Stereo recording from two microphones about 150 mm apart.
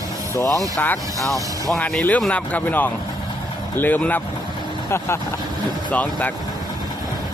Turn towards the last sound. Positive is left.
turn(degrees=10)  # may be behind; listen again after turning